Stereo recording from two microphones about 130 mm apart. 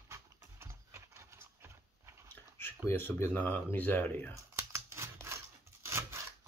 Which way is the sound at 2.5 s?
15° left (ahead or behind).